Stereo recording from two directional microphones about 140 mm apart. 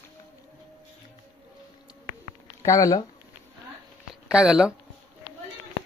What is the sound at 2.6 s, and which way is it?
Speech, 25° left (ahead or behind).